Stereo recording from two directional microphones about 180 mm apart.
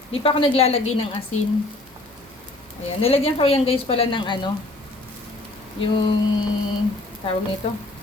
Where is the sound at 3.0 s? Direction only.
35° left (ahead or behind).